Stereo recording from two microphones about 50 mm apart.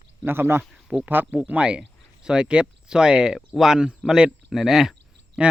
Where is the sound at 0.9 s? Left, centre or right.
Right; by 4.9 s centre.